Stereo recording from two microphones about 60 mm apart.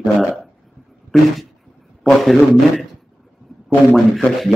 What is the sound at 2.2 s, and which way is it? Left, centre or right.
Speech, centre.